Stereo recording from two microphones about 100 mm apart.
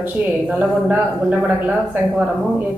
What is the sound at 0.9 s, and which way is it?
Speech, 15° right (ahead or behind).